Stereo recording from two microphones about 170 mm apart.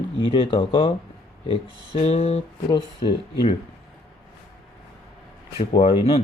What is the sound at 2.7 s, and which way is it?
Speech, 25° left (ahead or behind).